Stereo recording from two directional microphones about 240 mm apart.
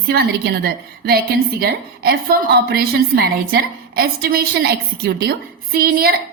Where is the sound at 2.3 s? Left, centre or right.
Right.